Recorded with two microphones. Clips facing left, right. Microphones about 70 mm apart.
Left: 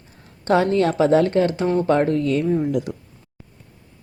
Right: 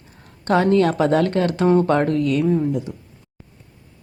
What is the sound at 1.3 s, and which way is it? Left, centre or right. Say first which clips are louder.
Speech: even; right.